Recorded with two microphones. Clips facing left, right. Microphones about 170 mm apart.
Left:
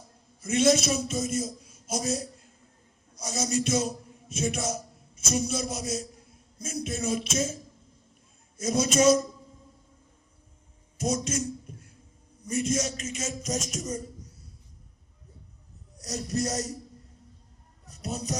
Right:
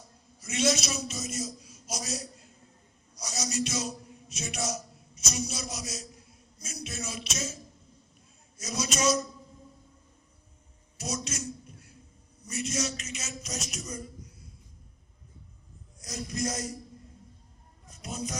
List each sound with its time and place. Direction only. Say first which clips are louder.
0.3 s a man's voice: left 6 dB; 55° left (ahead or behind)
8.5 s a man's voice: left 9 dB; 50° left (ahead or behind)
10.9 s a man's voice: left 7 dB; 50° left (ahead or behind)
16.0 s speech: left 4 dB; 40° left (ahead or behind)
17.8 s speech: left 3 dB; 40° left (ahead or behind)